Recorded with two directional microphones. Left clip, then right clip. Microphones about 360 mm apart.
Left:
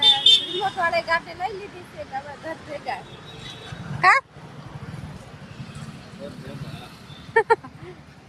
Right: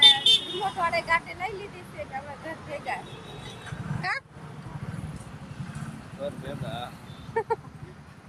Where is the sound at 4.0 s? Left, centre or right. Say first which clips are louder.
Left 15 dB; centre.